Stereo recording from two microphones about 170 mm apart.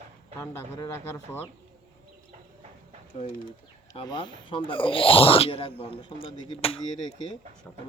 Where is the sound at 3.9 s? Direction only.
30° left (ahead or behind).